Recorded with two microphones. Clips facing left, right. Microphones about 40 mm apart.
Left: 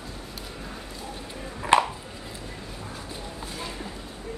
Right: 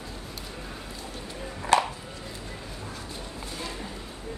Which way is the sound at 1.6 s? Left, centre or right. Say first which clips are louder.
Left 2 dB; left.